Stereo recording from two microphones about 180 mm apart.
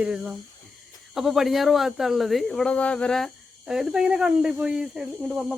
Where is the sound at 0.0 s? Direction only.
5° right (ahead or behind).